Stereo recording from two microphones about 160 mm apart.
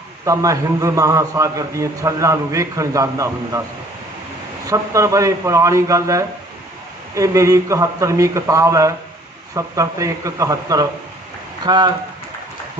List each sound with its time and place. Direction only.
0.3 s a man's voice: 20° right (ahead or behind)
4.6 s a man's voice: 20° right (ahead or behind)